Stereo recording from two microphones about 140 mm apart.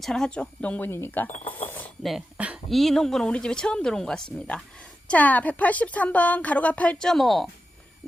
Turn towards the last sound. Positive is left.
turn(degrees=0)  # may be behind; listen again after turning